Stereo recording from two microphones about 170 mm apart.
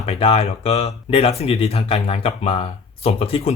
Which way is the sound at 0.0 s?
35° left (ahead or behind).